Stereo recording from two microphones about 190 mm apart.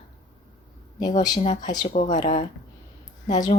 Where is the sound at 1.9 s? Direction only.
45° left (ahead or behind).